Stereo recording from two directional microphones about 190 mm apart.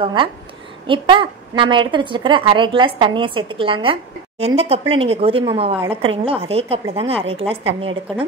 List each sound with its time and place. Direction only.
0.0 s a woman's voice: 25° right (ahead or behind)